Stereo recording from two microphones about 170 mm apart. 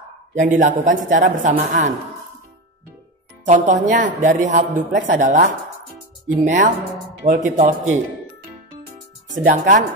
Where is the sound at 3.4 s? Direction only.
45° right (ahead or behind).